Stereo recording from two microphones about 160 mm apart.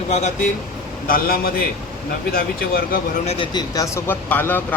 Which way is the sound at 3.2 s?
30° left (ahead or behind).